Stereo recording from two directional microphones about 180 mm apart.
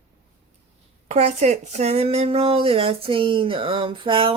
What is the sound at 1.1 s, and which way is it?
Speech, 35° right (ahead or behind).